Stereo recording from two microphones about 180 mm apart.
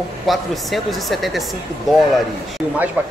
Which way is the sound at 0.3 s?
Centre (ahead or behind).